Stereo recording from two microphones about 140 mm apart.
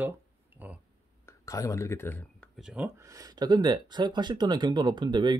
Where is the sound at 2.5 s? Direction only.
5° right (ahead or behind).